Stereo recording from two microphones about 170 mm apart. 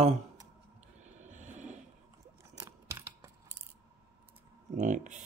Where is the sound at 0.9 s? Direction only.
45° right (ahead or behind).